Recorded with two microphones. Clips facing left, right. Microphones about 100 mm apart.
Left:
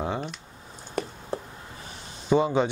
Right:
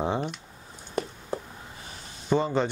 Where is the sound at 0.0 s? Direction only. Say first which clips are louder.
Right 2 dB; 20° right (ahead or behind).